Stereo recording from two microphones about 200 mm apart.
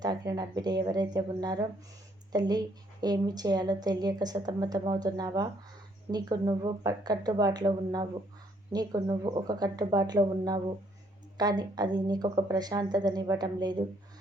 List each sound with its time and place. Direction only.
0.0 s a woman's voice: 20° right (ahead or behind)